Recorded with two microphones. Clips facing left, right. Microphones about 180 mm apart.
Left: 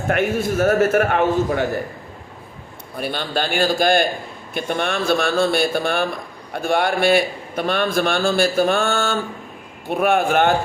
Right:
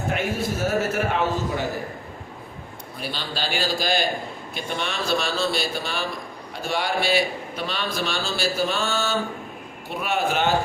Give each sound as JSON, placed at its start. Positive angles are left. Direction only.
{"t": 0.1, "sound": "a man's voice", "side_deg": 55}
{"t": 3.0, "sound": "a man's voice", "side_deg": 55}